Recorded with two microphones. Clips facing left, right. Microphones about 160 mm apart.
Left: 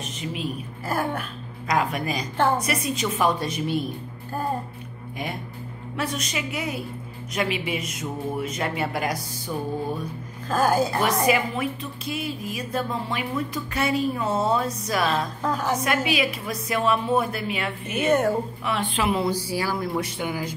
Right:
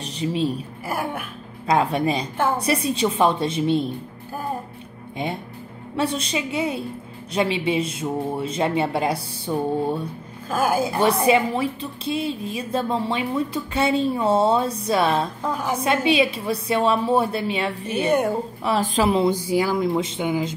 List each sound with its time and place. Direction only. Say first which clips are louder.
0.0 s a woman's voice: right 7 dB; 30° right (ahead or behind)
0.8 s speech: left 1 dB; 10° right (ahead or behind)
1.7 s a woman's voice: right 5 dB; 30° right (ahead or behind)
2.3 s speech: even; 10° right (ahead or behind)
2.6 s a woman's voice: right 5 dB; 30° right (ahead or behind)
5.9 s a woman's voice: right 5 dB; 30° right (ahead or behind)
10.5 s speech: even; 10° right (ahead or behind)
11.0 s a woman's voice: right 4 dB; 30° right (ahead or behind)
15.4 s speech: even; 10° right (ahead or behind)
15.8 s a woman's voice: right 5 dB; 30° right (ahead or behind)